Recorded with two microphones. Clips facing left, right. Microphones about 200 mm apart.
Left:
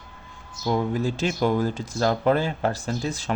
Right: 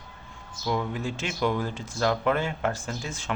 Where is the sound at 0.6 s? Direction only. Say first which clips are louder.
Left 5 dB; 40° left (ahead or behind).